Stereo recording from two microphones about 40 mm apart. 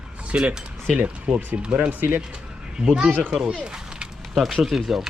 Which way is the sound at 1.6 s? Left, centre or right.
Right.